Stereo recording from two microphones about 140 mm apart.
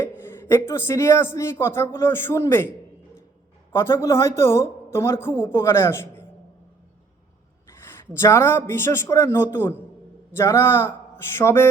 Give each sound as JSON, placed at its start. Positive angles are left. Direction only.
{"t": 0.3, "sound": "speech", "side_deg": 15}
{"t": 3.7, "sound": "speech", "side_deg": 20}
{"t": 7.9, "sound": "speech", "side_deg": 20}